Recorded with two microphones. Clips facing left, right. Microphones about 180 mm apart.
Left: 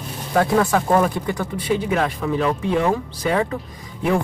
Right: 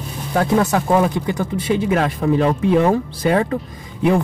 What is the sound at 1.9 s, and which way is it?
Speech, 40° right (ahead or behind).